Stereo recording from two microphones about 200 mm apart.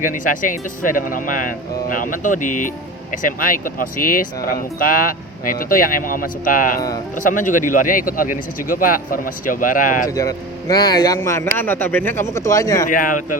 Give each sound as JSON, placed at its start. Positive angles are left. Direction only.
{"t": 0.0, "sound": "speech", "side_deg": 40}
{"t": 10.1, "sound": "a man's voice", "side_deg": 15}
{"t": 12.9, "sound": "speech", "side_deg": 45}